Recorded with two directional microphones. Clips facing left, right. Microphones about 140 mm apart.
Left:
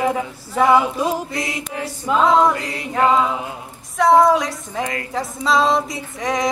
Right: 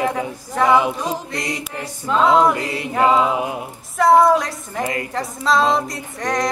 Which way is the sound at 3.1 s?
20° right (ahead or behind).